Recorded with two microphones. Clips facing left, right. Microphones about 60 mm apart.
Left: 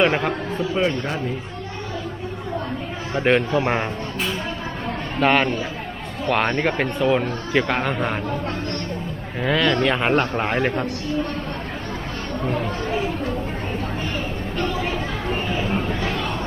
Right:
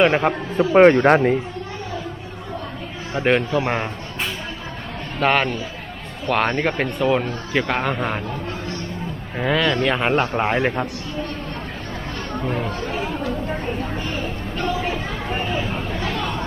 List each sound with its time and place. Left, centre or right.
0.0 s a man's voice: centre
0.6 s speech: right
3.2 s a man's voice: centre
5.2 s a man's voice: centre
9.4 s a man's voice: centre
12.5 s a man's voice: centre
14.6 s a sound: centre
15.3 s a sound: centre
16.0 s a sound: centre